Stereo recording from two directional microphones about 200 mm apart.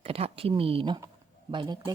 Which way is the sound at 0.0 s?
30° right (ahead or behind).